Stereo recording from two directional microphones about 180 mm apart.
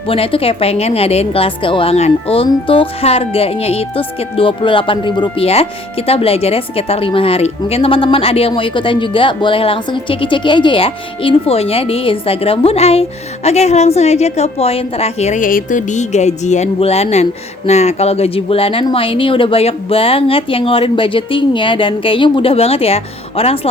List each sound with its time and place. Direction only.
0.1 s a woman's voice: 30° left (ahead or behind)